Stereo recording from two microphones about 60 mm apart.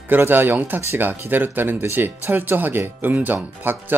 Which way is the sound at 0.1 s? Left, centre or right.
Right.